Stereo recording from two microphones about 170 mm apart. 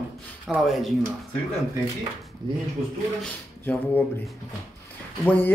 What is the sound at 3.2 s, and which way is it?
Speech, 10° left (ahead or behind).